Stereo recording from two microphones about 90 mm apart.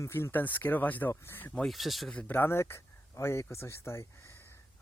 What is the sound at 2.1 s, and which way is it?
Speech, 20° left (ahead or behind).